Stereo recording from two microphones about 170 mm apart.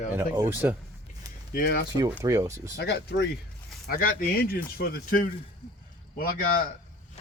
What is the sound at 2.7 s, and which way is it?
Speech, 75° left (ahead or behind).